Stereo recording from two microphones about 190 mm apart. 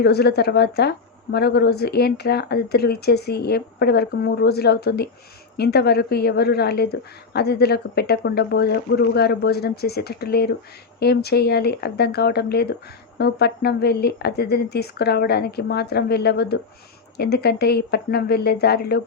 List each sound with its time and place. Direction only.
0.0 s a woman's voice: 60° left (ahead or behind)